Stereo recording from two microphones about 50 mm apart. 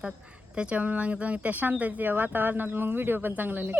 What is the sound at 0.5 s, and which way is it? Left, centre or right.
Speech, right.